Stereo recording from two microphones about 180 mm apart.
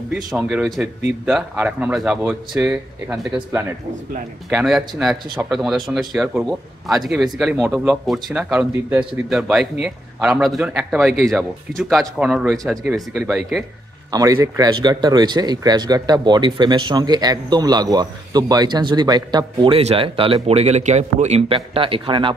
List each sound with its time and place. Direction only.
0.1 s a man's voice: 5° right (ahead or behind)
4.5 s a man's voice: centre (ahead or behind)
14.1 s a man's voice: 20° right (ahead or behind)